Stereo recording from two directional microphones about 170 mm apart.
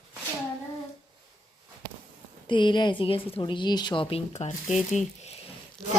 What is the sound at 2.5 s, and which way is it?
A woman's voice, 25° left (ahead or behind).